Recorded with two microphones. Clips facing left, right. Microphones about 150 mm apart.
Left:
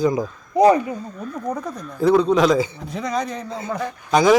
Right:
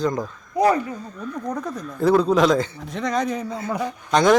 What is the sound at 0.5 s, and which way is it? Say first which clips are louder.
Speech: left 4 dB; 20° left (ahead or behind).